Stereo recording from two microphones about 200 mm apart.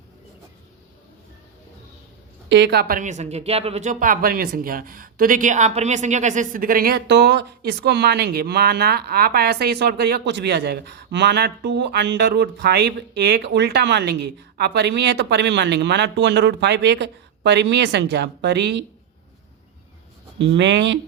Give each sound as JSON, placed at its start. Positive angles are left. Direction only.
{"t": 2.5, "sound": "speech", "side_deg": -60}
{"t": 20.4, "sound": "speech", "side_deg": -65}